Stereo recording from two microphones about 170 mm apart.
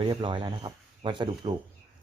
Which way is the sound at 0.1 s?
30° right (ahead or behind).